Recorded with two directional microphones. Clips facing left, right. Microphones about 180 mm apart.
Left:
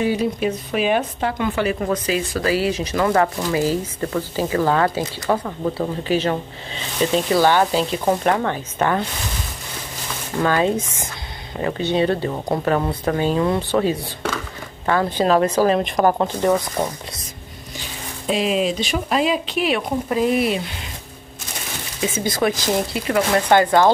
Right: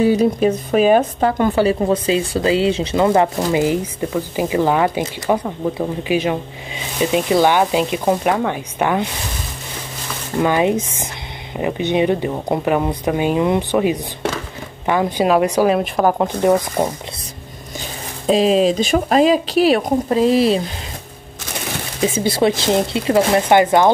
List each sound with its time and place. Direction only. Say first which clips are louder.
0.0 s speech: right 6 dB; 40° right (ahead or behind); by 9.0 s 10° right (ahead or behind)
10.4 s speech: right 3 dB; 15° right (ahead or behind)
18.2 s speech: right 6 dB; 35° right (ahead or behind)
22.0 s speech: right 4 dB; 30° right (ahead or behind)